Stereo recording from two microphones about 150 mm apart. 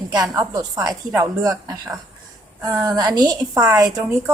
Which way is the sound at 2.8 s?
25° right (ahead or behind).